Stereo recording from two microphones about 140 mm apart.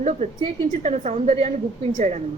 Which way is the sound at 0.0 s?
55° right (ahead or behind).